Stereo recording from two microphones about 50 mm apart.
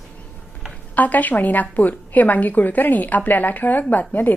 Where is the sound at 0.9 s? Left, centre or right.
Left.